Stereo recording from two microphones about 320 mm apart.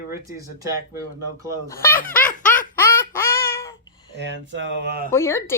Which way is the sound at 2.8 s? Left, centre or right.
Centre.